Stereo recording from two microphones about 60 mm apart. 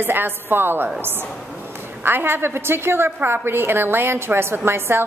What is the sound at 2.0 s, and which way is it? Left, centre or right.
A woman's voice, right.